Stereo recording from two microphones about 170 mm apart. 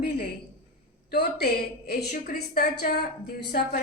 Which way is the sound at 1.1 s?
75° left (ahead or behind).